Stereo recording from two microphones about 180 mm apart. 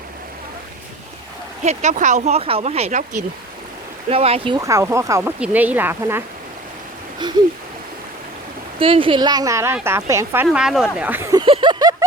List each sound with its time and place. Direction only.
1.6 s speech: 40° right (ahead or behind)
4.1 s speech: 30° right (ahead or behind)
4.6 s speech: 15° right (ahead or behind)
8.8 s speech: 30° right (ahead or behind); by 11.3 s 10° right (ahead or behind)
11.3 s a sound: 30° right (ahead or behind)